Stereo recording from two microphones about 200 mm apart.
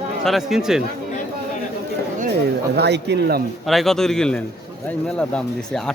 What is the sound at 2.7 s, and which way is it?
Speech, 55° right (ahead or behind).